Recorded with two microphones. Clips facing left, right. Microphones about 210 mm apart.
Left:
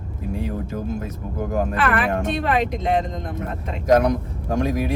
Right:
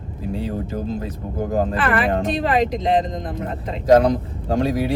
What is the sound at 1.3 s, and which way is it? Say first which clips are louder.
A man's voice: right 2 dB; 30° right (ahead or behind).